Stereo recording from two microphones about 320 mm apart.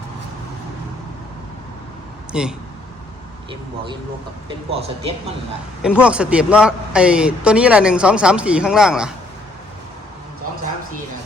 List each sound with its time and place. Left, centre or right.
2.3 s a man's voice: centre
4.4 s speech: centre
5.8 s a man's voice: centre